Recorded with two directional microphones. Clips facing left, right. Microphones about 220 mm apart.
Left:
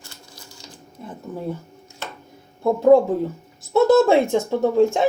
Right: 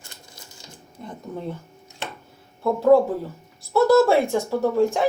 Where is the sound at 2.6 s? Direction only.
20° left (ahead or behind).